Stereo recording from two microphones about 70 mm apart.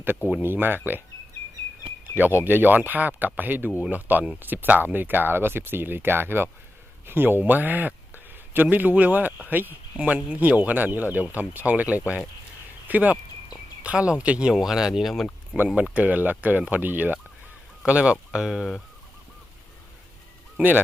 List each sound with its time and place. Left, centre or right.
0.4 s speech: right
2.1 s speech: right; by 18.8 s centre
20.6 s speech: right